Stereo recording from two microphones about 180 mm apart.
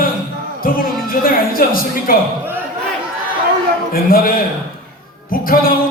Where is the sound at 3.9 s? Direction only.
55° left (ahead or behind).